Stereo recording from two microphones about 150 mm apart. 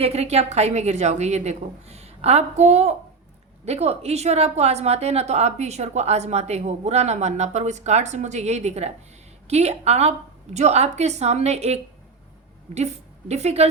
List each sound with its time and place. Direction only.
0.0 s a woman's voice: 45° right (ahead or behind)